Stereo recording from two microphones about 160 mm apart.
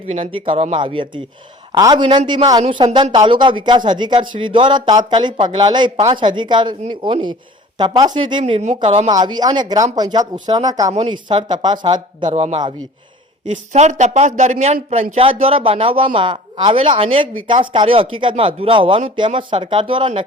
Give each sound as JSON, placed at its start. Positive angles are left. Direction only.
{"t": 0.1, "sound": "a man's voice", "side_deg": -35}
{"t": 9.0, "sound": "a man's voice", "side_deg": -25}
{"t": 12.3, "sound": "speech", "side_deg": -45}